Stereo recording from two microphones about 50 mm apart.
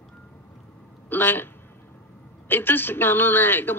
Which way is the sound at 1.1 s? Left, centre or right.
Left.